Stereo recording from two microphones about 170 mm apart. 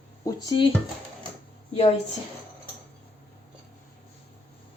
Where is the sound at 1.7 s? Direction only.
40° left (ahead or behind).